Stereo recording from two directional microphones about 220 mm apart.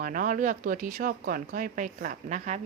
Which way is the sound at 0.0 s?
35° right (ahead or behind).